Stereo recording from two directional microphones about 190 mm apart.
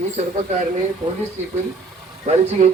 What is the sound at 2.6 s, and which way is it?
Speech, 40° right (ahead or behind).